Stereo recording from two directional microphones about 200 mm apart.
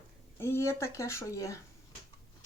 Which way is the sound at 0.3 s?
10° left (ahead or behind).